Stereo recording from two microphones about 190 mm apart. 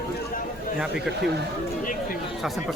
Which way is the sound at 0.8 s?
Centre (ahead or behind).